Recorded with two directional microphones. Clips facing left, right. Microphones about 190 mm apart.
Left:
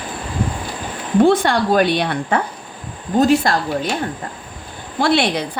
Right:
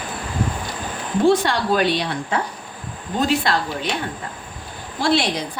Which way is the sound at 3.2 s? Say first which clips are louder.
Left 5 dB; 45° left (ahead or behind).